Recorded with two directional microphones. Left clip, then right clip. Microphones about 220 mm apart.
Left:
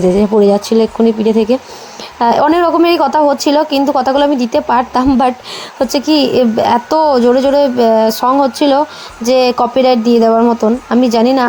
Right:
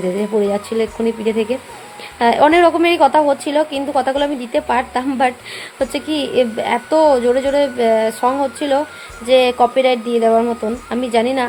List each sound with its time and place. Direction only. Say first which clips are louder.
0.2 s a woman's voice: left 8 dB; 30° left (ahead or behind)